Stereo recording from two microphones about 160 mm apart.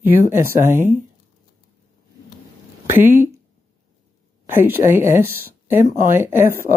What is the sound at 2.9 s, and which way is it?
Speech, 15° right (ahead or behind).